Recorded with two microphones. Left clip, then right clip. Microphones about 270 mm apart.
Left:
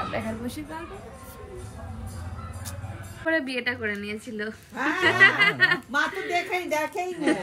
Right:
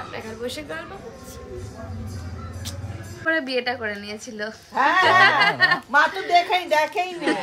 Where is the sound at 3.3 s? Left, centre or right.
Centre.